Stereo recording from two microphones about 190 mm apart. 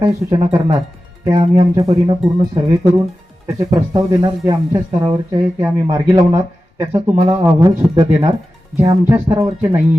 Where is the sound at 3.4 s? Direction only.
15° right (ahead or behind).